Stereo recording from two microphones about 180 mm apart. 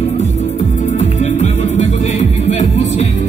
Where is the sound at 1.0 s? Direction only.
35° left (ahead or behind).